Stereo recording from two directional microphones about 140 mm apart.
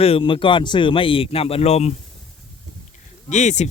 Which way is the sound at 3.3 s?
55° left (ahead or behind).